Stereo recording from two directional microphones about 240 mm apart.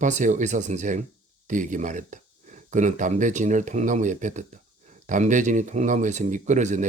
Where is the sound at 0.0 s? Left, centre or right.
Right.